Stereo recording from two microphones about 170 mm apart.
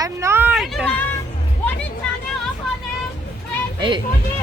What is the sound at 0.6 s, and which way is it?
Speech, centre (ahead or behind).